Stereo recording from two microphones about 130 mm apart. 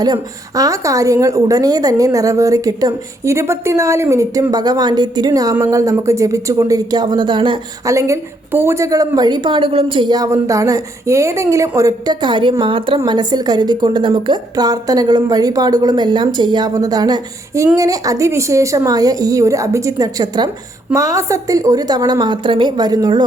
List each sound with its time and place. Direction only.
0.0 s a woman's voice: 30° right (ahead or behind)
7.9 s a woman's voice: 25° right (ahead or behind)